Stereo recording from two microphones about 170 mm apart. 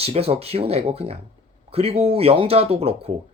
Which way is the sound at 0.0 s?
35° right (ahead or behind).